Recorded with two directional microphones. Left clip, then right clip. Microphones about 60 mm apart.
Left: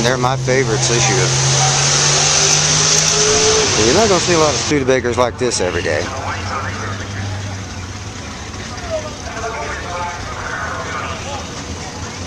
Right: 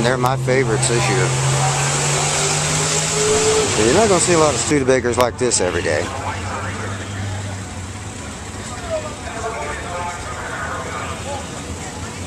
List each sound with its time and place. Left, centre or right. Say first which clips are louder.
0.0 s speech: left 2 dB; centre
1.1 s air conditioning: left 4 dB; left
4.7 s speech: even; centre